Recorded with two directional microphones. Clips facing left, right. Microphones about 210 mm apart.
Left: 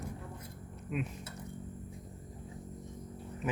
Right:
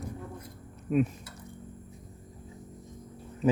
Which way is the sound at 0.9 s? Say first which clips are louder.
Right 11 dB; 40° right (ahead or behind).